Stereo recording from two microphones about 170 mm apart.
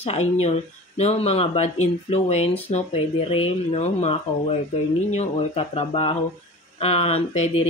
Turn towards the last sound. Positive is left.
turn(degrees=40)  # may be behind; listen again after turning